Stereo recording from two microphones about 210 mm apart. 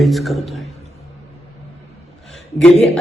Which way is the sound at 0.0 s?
Centre (ahead or behind).